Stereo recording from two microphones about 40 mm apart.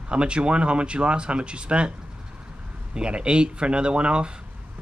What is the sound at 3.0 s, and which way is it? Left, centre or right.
Speech, right.